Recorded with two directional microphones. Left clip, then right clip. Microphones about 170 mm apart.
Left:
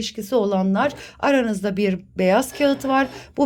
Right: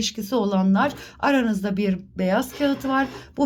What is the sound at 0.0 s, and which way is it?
Speech, 10° left (ahead or behind).